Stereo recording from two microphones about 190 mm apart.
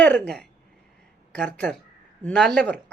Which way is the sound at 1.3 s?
5° left (ahead or behind).